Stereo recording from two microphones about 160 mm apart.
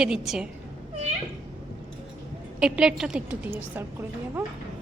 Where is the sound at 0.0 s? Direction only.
5° right (ahead or behind).